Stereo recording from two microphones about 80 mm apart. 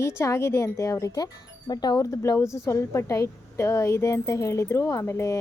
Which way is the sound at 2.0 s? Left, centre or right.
Left.